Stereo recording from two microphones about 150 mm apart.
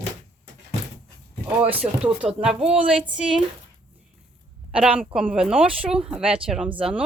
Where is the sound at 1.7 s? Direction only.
10° right (ahead or behind).